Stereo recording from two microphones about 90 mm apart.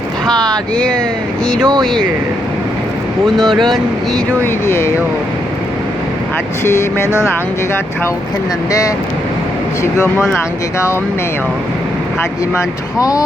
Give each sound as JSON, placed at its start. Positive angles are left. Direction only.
{"t": 0.3, "sound": "speech", "side_deg": 5}
{"t": 3.3, "sound": "speech", "side_deg": 5}
{"t": 4.6, "sound": "speech", "side_deg": 30}
{"t": 6.7, "sound": "speech", "side_deg": 30}
{"t": 13.0, "sound": "speech", "side_deg": 40}